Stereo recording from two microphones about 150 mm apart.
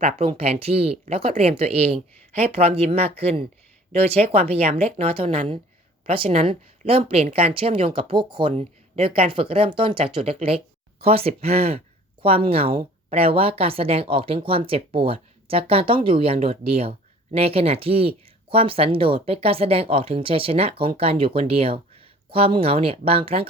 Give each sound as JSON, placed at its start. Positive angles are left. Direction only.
{"t": 0.0, "sound": "speech", "side_deg": -40}